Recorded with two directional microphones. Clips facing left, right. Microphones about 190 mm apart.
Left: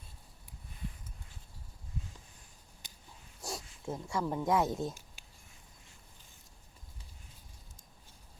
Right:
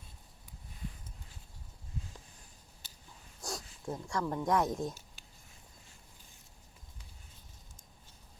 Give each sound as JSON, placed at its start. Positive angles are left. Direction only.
{"t": 2.8, "sound": "dog", "side_deg": 15}
{"t": 3.4, "sound": "speech", "side_deg": 5}